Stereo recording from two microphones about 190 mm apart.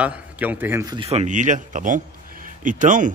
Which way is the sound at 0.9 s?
30° right (ahead or behind).